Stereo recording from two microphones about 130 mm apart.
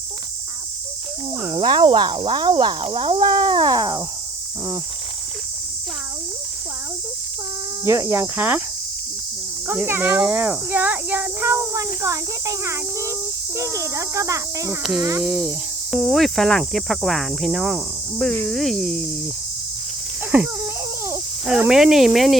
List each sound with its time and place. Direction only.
1.5 s speech: 35° right (ahead or behind)
7.9 s speech: 20° right (ahead or behind)
9.6 s a child's voice: 15° right (ahead or behind)
15.2 s cricket: 5° right (ahead or behind)
18.2 s cricket: 10° left (ahead or behind)
21.7 s cricket: 5° right (ahead or behind)